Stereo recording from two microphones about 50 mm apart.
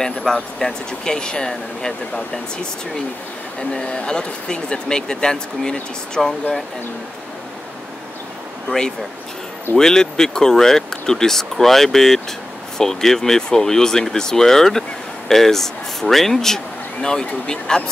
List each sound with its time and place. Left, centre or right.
0.0 s speech: centre
3.7 s speech: centre
8.6 s speech: centre